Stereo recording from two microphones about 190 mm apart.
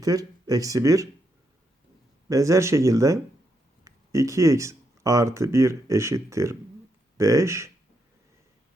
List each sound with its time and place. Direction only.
0.0 s speech: 20° right (ahead or behind)
2.3 s speech: 15° right (ahead or behind)